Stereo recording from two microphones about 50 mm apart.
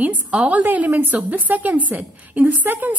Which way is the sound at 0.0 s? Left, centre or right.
Right.